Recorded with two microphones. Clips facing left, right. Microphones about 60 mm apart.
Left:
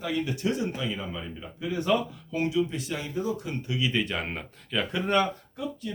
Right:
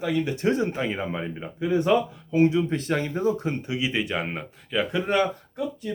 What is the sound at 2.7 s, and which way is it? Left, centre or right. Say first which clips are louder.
Speech: right 7 dB; right.